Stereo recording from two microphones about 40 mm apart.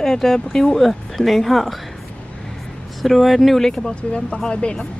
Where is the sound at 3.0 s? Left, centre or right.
Centre.